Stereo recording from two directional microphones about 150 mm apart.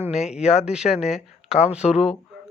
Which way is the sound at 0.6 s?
5° right (ahead or behind).